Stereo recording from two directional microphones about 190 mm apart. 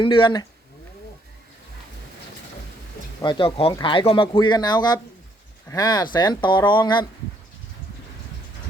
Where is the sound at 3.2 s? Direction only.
25° left (ahead or behind).